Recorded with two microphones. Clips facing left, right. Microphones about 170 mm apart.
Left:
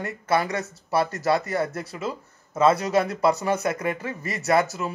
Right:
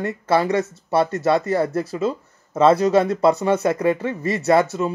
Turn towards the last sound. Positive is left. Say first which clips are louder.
# right 5 dB
turn(degrees=-25)  # may be behind; listen again after turning